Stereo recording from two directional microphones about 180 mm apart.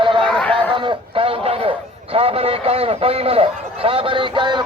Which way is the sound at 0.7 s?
30° right (ahead or behind).